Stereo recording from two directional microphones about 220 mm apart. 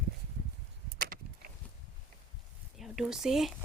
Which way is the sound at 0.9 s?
40° right (ahead or behind).